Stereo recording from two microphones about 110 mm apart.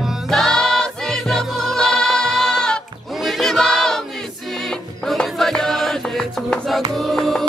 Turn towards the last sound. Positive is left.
turn(degrees=0)  # may be behind; listen again after turning